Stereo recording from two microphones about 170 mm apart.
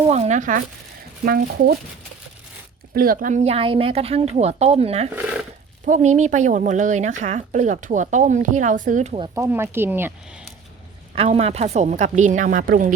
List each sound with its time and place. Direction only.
0.1 s speech: 40° right (ahead or behind)
1.2 s speech: 60° right (ahead or behind)
2.9 s a woman's voice: 60° right (ahead or behind); by 5.0 s 35° right (ahead or behind)
5.1 s a sound: 5° right (ahead or behind)
5.8 s speech: 45° right (ahead or behind)
9.3 s speech: 15° right (ahead or behind)
11.1 s speech: 35° right (ahead or behind)